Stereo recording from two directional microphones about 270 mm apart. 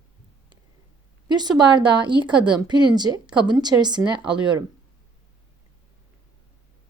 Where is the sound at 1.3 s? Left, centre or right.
Centre.